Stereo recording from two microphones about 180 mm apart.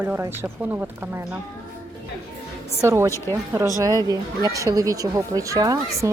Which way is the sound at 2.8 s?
15° right (ahead or behind).